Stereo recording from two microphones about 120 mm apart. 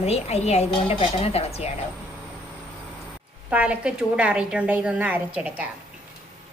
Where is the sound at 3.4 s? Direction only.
10° right (ahead or behind).